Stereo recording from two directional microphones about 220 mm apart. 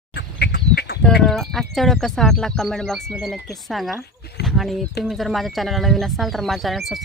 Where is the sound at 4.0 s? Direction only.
45° left (ahead or behind).